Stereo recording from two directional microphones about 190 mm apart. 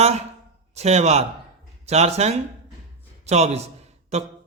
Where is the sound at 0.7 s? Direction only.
35° right (ahead or behind).